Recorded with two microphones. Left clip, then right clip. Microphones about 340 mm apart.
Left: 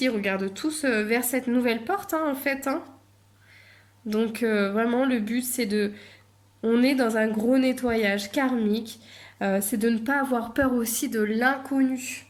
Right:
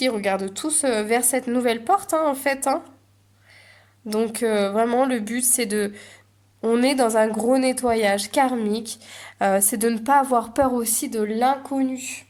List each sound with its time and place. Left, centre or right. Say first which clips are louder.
0.0 s a woman's voice: right 4 dB; centre
4.1 s a woman's voice: right 3 dB; centre